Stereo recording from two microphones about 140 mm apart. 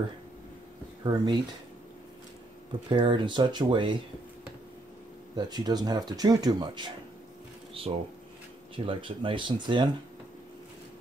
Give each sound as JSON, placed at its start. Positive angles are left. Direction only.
{"t": 1.0, "sound": "speech", "side_deg": -30}
{"t": 2.9, "sound": "speech", "side_deg": -35}
{"t": 5.3, "sound": "speech", "side_deg": -30}